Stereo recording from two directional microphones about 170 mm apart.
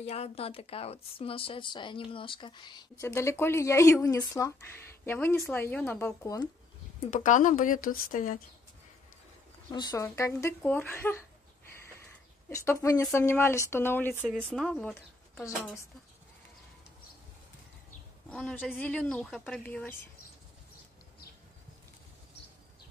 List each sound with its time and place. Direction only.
0.0 s speech: 40° left (ahead or behind); by 6.5 s 20° left (ahead or behind)
7.1 s speech: 50° left (ahead or behind)
9.7 s speech: 25° left (ahead or behind)
12.4 s speech: 15° left (ahead or behind)
18.3 s a woman's voice: 5° left (ahead or behind)